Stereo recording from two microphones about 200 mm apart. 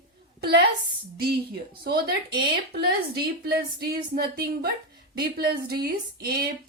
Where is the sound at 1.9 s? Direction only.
50° right (ahead or behind).